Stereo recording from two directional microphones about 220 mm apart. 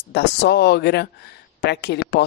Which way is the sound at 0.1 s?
50° left (ahead or behind).